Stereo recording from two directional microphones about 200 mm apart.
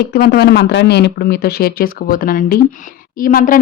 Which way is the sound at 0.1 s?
55° left (ahead or behind).